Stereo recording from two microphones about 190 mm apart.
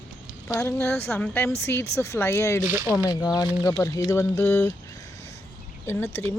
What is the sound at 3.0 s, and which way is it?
A woman's voice, 15° left (ahead or behind).